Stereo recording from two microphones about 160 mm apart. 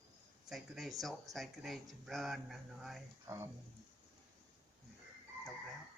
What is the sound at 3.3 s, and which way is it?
Speech, 20° right (ahead or behind).